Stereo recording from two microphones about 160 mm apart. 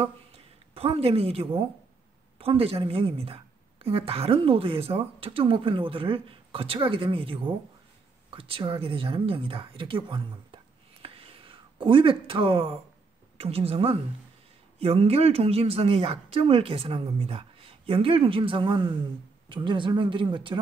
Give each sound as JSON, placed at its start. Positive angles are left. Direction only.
{"t": 0.7, "sound": "a woman's voice", "side_deg": -35}